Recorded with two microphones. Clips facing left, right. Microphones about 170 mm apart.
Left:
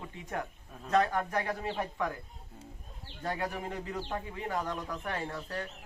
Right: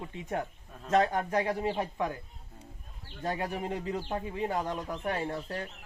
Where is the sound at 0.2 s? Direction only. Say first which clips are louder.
Right 3 dB; 20° right (ahead or behind).